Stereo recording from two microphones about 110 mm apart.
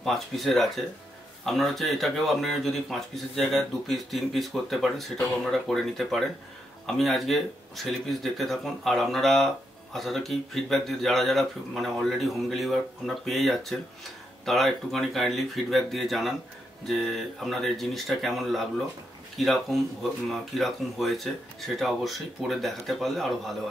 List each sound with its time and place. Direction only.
0.0 s speech: centre (ahead or behind)